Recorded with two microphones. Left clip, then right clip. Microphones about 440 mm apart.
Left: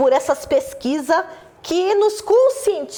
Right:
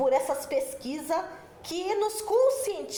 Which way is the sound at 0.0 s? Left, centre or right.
Left.